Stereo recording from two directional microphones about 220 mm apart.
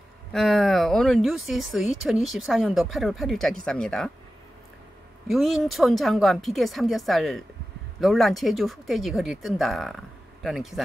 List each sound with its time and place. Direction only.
0.3 s speech: centre (ahead or behind)
5.3 s speech: centre (ahead or behind)